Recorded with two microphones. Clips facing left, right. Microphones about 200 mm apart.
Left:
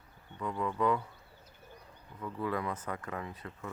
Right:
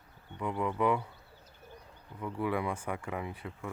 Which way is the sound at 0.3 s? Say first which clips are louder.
Right 2 dB; 15° right (ahead or behind).